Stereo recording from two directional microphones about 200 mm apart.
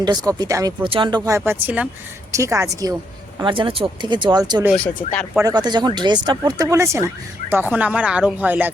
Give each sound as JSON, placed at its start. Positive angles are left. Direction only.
{"t": 0.0, "sound": "speech", "side_deg": -20}
{"t": 1.5, "sound": "speech", "side_deg": -10}